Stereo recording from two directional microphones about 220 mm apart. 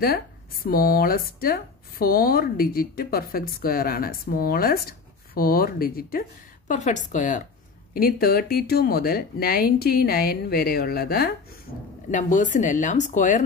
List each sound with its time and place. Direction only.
0.7 s speech: 40° left (ahead or behind)